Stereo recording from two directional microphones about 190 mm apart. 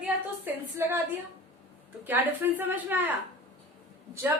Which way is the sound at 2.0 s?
10° right (ahead or behind).